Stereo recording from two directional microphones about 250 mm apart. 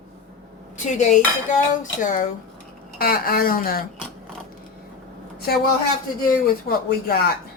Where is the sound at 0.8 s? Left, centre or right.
Left.